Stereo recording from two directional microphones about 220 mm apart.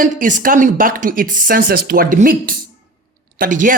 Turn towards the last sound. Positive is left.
turn(degrees=-35)  # may be behind; listen again after turning